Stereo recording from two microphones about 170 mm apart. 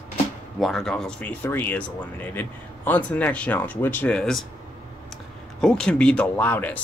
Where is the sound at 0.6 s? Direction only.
Centre (ahead or behind).